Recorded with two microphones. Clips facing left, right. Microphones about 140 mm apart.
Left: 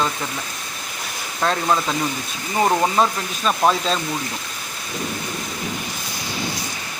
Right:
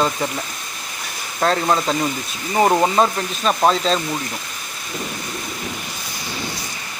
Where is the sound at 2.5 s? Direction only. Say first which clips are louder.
Right 2 dB; 10° right (ahead or behind).